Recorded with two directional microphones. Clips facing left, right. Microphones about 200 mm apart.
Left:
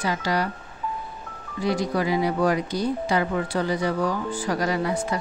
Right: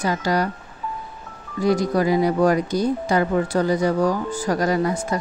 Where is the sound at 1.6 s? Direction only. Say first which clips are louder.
Right 5 dB; 45° right (ahead or behind).